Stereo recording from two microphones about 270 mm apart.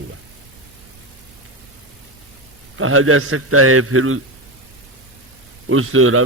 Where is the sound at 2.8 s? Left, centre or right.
Right.